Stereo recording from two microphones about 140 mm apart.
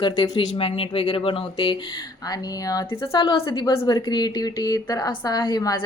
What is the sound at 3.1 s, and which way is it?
Speech, 40° left (ahead or behind).